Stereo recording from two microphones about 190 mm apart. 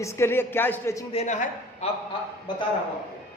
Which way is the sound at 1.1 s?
40° left (ahead or behind).